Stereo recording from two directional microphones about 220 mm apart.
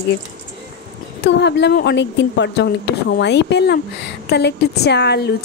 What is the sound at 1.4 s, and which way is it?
Speech, 50° left (ahead or behind).